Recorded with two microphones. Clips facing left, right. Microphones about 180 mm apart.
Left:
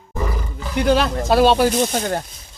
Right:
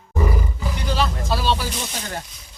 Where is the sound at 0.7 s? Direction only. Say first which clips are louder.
Left 8 dB; 60° left (ahead or behind).